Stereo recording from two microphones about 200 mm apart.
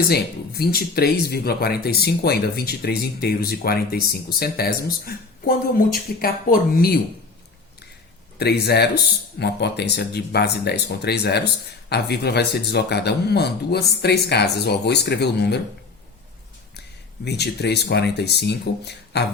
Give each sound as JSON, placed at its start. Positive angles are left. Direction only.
{"t": 0.1, "sound": "speech", "side_deg": 50}
{"t": 8.4, "sound": "speech", "side_deg": 55}
{"t": 17.2, "sound": "speech", "side_deg": 55}